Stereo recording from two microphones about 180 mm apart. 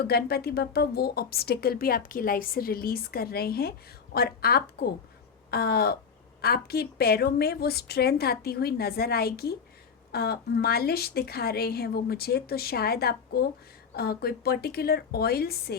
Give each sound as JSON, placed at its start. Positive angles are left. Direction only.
{"t": 0.1, "sound": "a woman's voice", "side_deg": 60}